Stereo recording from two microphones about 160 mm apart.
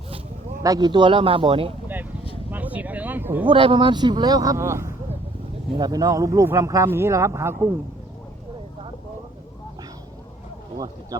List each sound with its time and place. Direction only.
0.6 s speech: 25° right (ahead or behind)
2.5 s a sound: 10° right (ahead or behind)
3.4 s speech: 30° right (ahead or behind); by 7.7 s 15° right (ahead or behind)
11.1 s speech: 25° right (ahead or behind)